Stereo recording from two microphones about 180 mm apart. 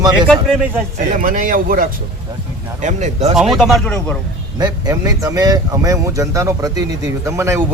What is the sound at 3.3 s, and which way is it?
Speech, centre (ahead or behind).